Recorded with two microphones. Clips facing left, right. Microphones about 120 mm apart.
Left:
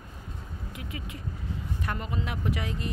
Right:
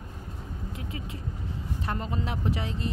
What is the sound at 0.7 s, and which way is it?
A woman's voice, 30° right (ahead or behind).